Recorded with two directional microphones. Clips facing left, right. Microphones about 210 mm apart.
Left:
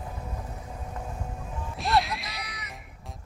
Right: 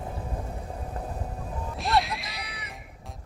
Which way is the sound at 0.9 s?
35° right (ahead or behind).